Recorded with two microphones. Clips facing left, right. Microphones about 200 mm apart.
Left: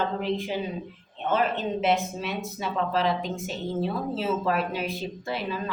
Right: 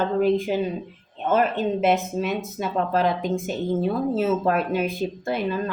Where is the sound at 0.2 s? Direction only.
50° right (ahead or behind).